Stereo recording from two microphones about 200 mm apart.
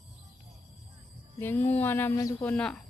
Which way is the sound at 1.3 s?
10° left (ahead or behind).